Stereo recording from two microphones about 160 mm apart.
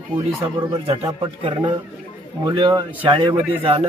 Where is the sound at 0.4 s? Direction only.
35° right (ahead or behind).